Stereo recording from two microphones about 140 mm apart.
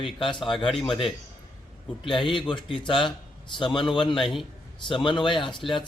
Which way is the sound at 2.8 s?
35° left (ahead or behind).